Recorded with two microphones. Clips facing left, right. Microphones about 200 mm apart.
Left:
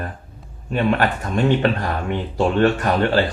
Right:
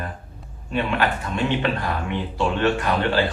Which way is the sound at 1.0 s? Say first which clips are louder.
Left 4 dB; 40° left (ahead or behind).